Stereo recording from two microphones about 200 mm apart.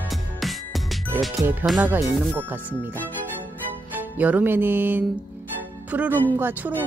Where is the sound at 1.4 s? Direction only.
10° right (ahead or behind).